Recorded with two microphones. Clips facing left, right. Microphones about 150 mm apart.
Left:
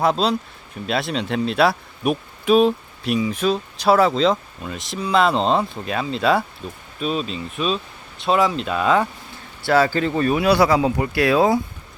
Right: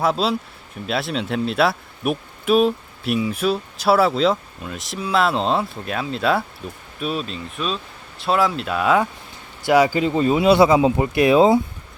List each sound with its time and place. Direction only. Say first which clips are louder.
0.0 s speech: left 1 dB; 5° right (ahead or behind); by 11.6 s 20° right (ahead or behind)